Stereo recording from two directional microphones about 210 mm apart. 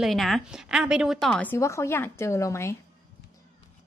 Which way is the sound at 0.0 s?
Centre (ahead or behind).